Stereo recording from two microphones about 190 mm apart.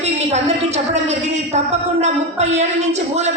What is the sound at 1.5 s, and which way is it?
Speech, 35° right (ahead or behind).